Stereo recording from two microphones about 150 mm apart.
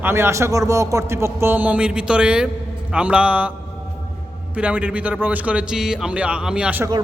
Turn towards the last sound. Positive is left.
turn(degrees=-10)  # may be behind; listen again after turning